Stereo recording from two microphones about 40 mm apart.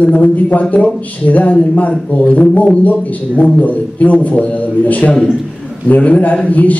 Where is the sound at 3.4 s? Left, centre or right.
Left.